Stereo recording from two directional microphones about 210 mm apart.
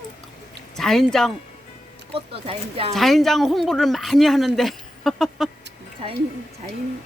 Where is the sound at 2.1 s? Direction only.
25° right (ahead or behind).